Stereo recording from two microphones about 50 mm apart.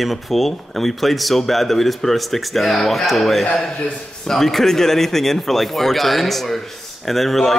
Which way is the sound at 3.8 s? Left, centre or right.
Centre.